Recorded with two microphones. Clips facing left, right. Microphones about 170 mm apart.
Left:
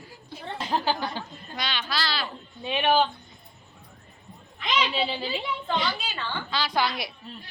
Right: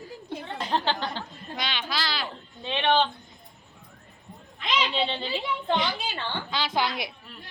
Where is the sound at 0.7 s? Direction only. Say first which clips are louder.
Left 1 dB; 10° left (ahead or behind).